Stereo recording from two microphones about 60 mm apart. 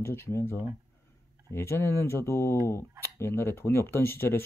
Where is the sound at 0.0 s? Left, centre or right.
Left.